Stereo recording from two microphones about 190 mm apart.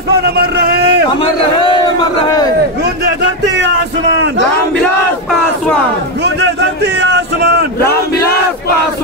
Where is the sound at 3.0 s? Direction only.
65° right (ahead or behind).